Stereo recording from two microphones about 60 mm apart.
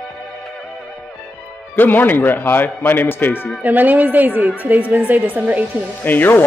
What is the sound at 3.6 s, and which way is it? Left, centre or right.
A woman's voice, right.